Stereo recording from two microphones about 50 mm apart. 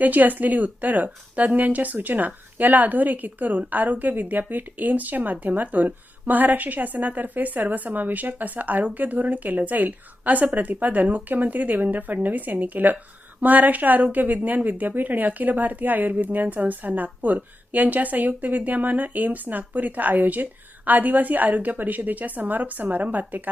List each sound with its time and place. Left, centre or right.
0.0 s a woman's voice: right